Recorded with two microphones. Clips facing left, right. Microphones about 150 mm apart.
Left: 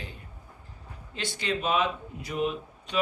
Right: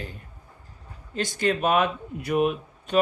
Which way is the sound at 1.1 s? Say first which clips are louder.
Right 6 dB; 45° right (ahead or behind).